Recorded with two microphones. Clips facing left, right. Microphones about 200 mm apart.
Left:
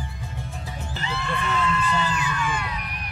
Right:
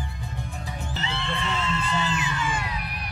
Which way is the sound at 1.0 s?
25° right (ahead or behind).